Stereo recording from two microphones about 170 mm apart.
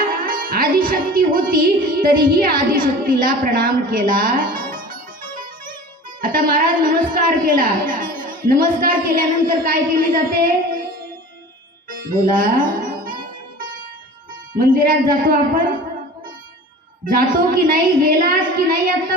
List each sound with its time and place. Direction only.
0.0 s music: 60° right (ahead or behind)
2.2 s a woman's voice: 55° right (ahead or behind)
4.5 s music: 55° right (ahead or behind)
6.2 s a woman's voice: 55° right (ahead or behind)
11.9 s music: 55° right (ahead or behind)
14.5 s a woman's voice: 55° right (ahead or behind)
17.1 s a woman's voice: 55° right (ahead or behind)